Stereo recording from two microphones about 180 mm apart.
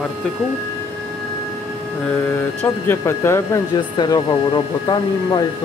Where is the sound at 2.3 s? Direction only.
15° left (ahead or behind).